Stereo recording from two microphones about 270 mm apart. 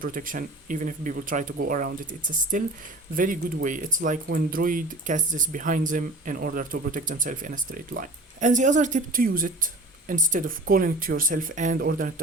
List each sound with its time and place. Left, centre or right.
0.0 s speech: right